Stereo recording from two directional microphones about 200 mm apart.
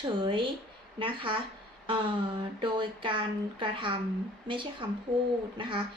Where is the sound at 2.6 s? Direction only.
25° right (ahead or behind).